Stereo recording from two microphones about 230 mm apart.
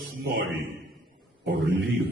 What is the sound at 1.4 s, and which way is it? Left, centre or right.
Speech, right.